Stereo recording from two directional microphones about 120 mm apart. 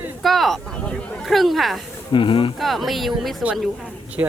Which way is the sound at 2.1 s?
45° left (ahead or behind).